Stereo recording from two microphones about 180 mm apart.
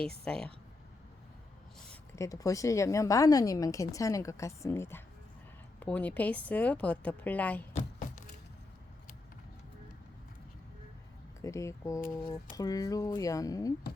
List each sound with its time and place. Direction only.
0.3 s speech: 5° left (ahead or behind)
1.9 s a woman's voice: 15° left (ahead or behind)
7.7 s a sound: 40° left (ahead or behind)
11.4 s a woman's voice: 15° left (ahead or behind)